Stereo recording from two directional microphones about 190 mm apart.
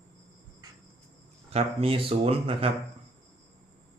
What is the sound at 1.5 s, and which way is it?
Speech, 30° right (ahead or behind).